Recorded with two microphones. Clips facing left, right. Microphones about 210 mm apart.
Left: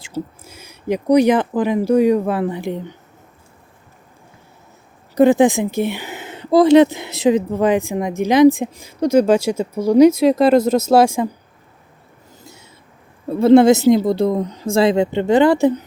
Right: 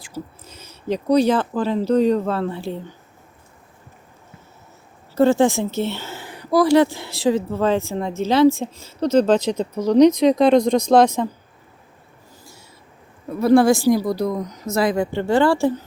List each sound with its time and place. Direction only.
0.4 s speech: 10° left (ahead or behind)
5.1 s speech: 15° left (ahead or behind)
12.4 s owl: 20° left (ahead or behind)
13.2 s speech: 25° left (ahead or behind)